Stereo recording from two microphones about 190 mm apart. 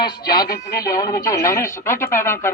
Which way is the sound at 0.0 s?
20° left (ahead or behind).